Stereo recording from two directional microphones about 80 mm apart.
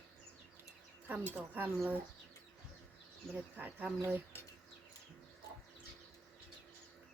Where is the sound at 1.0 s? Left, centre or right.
Right.